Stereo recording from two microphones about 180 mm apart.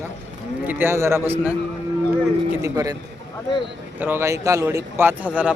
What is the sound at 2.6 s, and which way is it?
Speech, 20° right (ahead or behind).